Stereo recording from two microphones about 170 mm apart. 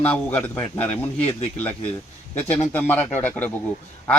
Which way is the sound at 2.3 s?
10° left (ahead or behind).